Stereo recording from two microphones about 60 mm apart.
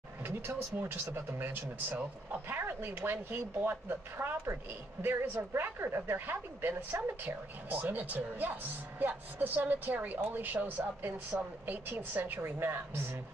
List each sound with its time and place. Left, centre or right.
0.2 s speech: right
1.1 s speech: right